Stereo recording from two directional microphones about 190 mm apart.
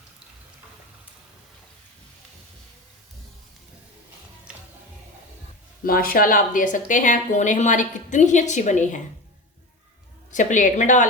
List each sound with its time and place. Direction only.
4.5 s music: 5° right (ahead or behind)
5.8 s a woman's voice: 50° left (ahead or behind)
10.3 s a woman's voice: 40° left (ahead or behind)